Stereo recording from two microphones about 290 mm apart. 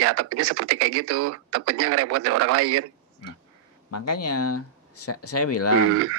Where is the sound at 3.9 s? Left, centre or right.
Left.